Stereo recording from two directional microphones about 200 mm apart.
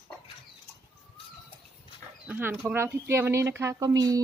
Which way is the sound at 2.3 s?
10° right (ahead or behind).